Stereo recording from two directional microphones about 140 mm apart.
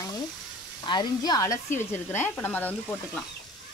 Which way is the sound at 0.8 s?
30° left (ahead or behind).